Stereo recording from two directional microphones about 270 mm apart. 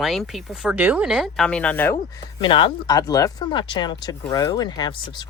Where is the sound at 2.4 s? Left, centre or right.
Centre.